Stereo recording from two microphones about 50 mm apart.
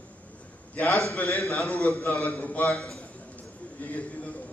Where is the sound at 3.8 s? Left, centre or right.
Left.